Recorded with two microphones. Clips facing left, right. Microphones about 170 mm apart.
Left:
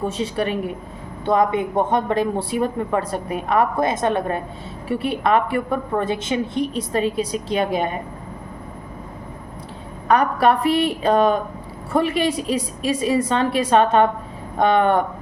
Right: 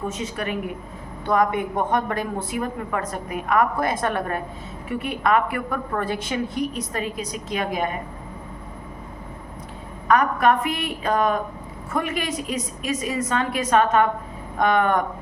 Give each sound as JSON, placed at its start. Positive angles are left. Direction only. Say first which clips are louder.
{"t": 0.0, "sound": "a woman's voice", "louder": "left 5 dB", "side_deg": 30}
{"t": 10.1, "sound": "a woman's voice", "louder": "left 2 dB", "side_deg": 30}